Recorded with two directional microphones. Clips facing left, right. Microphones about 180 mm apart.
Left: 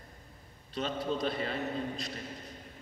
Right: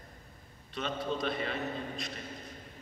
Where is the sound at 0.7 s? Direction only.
35° left (ahead or behind).